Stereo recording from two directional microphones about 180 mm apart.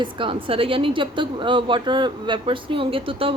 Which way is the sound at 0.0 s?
30° right (ahead or behind).